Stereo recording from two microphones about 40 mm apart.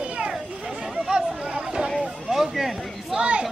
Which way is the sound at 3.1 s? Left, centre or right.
Right.